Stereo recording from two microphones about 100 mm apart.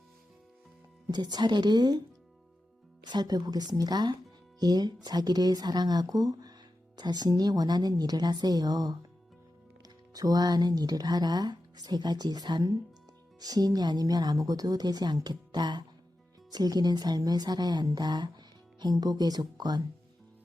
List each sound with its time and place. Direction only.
1.1 s speech: 45° right (ahead or behind)
3.0 s speech: 45° right (ahead or behind)
10.2 s speech: 40° right (ahead or behind)